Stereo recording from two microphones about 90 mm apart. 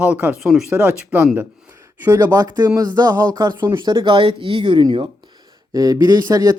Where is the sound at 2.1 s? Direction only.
40° right (ahead or behind).